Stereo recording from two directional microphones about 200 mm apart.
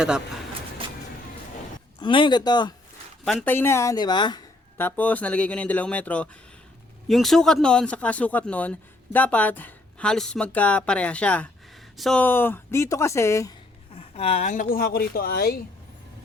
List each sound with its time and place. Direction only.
0.8 s vehicle: 25° right (ahead or behind)
2.0 s speech: 25° left (ahead or behind)
3.2 s speech: 10° left (ahead or behind)
4.8 s speech: 10° left (ahead or behind)
13.9 s speech: 30° left (ahead or behind); by 15.5 s 50° left (ahead or behind)